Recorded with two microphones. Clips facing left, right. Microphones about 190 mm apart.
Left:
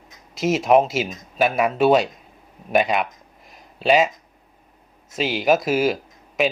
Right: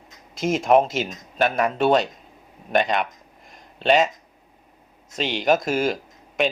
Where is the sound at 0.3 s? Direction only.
5° left (ahead or behind).